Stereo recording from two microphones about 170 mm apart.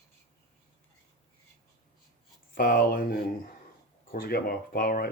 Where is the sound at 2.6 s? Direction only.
60° left (ahead or behind).